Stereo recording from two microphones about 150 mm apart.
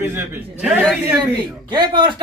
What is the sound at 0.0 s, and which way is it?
Speech, 15° right (ahead or behind).